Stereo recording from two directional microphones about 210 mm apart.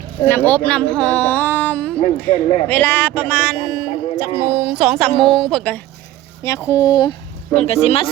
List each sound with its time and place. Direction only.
0.3 s a man's voice: 10° left (ahead or behind)
7.5 s speech: 30° left (ahead or behind)